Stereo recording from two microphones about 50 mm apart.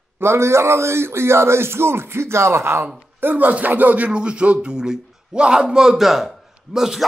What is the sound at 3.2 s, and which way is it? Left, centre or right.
Speech, right.